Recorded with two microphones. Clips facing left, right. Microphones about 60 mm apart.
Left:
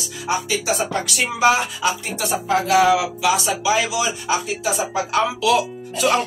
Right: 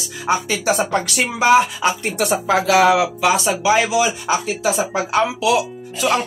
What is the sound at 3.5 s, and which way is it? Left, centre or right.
Speech, right.